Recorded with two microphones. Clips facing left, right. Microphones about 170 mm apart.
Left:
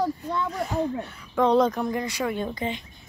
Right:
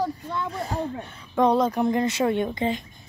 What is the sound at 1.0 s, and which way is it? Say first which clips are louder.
Speech: right 1 dB; 20° right (ahead or behind).